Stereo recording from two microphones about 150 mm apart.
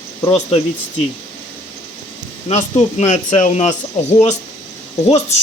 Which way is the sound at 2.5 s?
50° left (ahead or behind).